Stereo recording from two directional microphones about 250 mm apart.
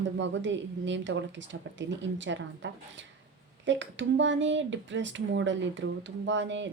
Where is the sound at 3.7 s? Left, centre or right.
Right.